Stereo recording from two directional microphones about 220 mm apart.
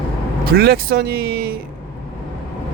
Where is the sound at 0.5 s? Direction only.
45° right (ahead or behind).